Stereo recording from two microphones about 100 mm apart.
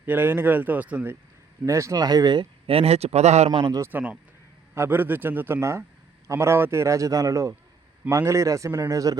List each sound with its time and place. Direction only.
0.0 s speech: 20° right (ahead or behind)
1.6 s a man's voice: 30° right (ahead or behind)
2.6 s a man's voice: 80° right
3.9 s a man's voice: 15° right (ahead or behind); by 9.1 s 35° right (ahead or behind)